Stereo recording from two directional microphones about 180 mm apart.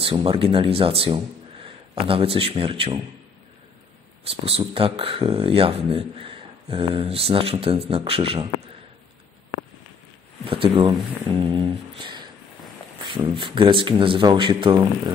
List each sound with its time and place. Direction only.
0.0 s speech: 30° right (ahead or behind)
4.2 s speech: 30° right (ahead or behind)
10.4 s speech: 30° right (ahead or behind)
11.3 s a sound: 30° right (ahead or behind)
13.0 s speech: 30° right (ahead or behind)